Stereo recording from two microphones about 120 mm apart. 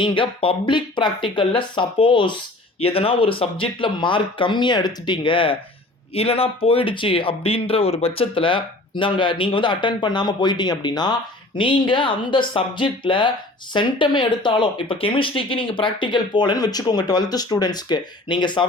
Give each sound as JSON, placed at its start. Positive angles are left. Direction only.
{"t": 0.0, "sound": "speech", "side_deg": 45}